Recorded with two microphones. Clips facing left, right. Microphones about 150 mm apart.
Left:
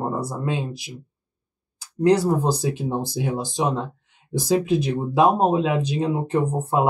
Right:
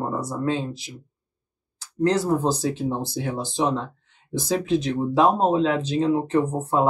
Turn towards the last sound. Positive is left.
turn(degrees=10)  # may be behind; listen again after turning